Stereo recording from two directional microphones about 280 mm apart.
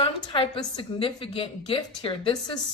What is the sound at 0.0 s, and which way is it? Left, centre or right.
A woman's voice, centre.